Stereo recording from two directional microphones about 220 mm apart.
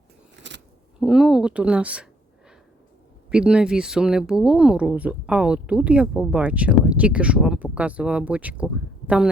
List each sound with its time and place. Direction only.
0.4 s a sound: 55° right (ahead or behind)
0.9 s speech: centre (ahead or behind)
3.2 s speech: 5° right (ahead or behind)